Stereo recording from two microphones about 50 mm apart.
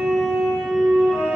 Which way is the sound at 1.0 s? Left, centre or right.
Centre.